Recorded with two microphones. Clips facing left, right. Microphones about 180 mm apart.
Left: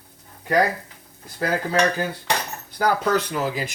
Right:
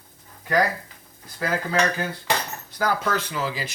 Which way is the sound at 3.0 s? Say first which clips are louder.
Left 4 dB; 45° left (ahead or behind).